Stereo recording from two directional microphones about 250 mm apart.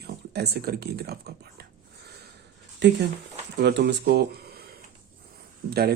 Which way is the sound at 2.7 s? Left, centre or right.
Right.